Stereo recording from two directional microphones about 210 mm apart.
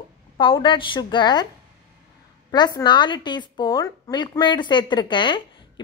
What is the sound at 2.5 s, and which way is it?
A woman's voice, 20° left (ahead or behind).